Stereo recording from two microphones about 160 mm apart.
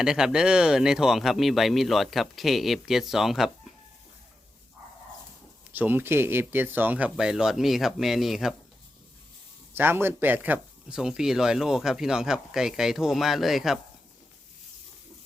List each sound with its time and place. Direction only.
0.0 s speech: 5° right (ahead or behind)
5.7 s speech: 10° right (ahead or behind)
9.7 s speech: 15° right (ahead or behind)